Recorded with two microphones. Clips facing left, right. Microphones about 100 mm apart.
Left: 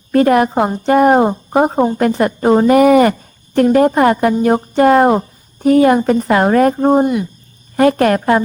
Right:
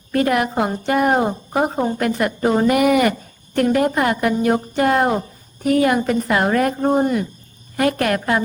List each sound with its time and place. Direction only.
0.1 s a woman's voice: 35° left (ahead or behind)
7.0 s speech: 15° left (ahead or behind)
7.8 s a woman's voice: 35° left (ahead or behind)